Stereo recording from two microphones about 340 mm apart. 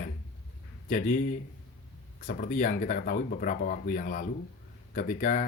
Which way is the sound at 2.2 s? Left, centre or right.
Left.